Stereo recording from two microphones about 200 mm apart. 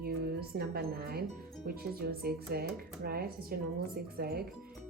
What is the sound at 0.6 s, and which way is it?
Speech, 50° right (ahead or behind).